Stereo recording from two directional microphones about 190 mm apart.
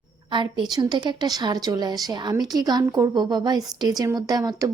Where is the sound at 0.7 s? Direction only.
20° right (ahead or behind).